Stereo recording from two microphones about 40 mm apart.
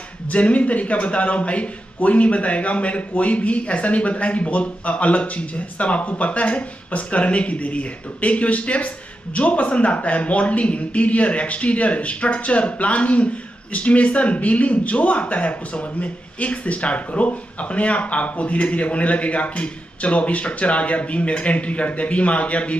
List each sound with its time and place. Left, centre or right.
0.3 s a man's voice: left